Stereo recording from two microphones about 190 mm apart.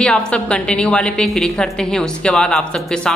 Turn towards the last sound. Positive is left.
turn(degrees=5)  # may be behind; listen again after turning